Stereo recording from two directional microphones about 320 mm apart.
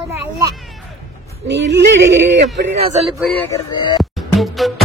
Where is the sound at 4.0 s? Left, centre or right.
Centre.